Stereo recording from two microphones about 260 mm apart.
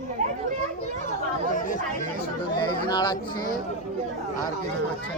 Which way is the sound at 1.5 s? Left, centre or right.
Left.